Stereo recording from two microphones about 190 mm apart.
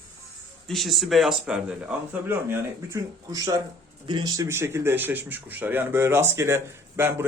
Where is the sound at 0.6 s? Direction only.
Centre (ahead or behind).